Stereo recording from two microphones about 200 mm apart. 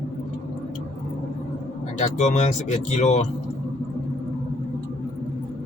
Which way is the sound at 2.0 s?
35° left (ahead or behind).